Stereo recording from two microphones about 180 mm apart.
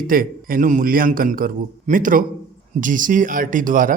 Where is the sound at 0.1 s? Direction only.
50° right (ahead or behind).